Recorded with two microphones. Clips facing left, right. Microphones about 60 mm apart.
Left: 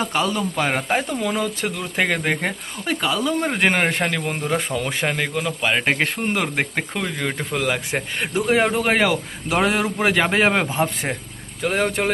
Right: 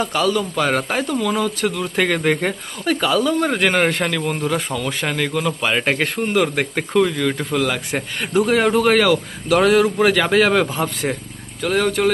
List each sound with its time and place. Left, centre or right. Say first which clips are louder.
0.0 s speech: right 3 dB; left
2.0 s speech: right 3 dB; centre
5.4 s speech: right 1 dB; centre; by 12.1 s left